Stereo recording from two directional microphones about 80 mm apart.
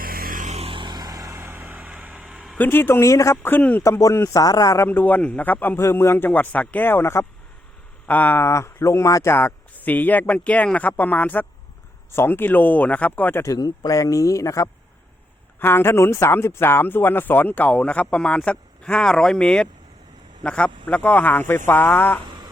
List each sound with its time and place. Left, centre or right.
0.7 s vehicle: right
1.4 s vehicle: right
2.6 s speech: left
3.5 s speech: left
3.8 s speech: left
4.9 s speech: left
8.4 s speech: left
9.3 s speech: left
13.4 s speech: left
15.5 s speech: left